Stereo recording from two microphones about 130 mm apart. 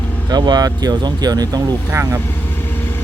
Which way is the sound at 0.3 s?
30° right (ahead or behind).